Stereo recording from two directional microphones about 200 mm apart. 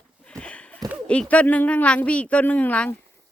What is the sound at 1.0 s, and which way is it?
Speech, 5° left (ahead or behind).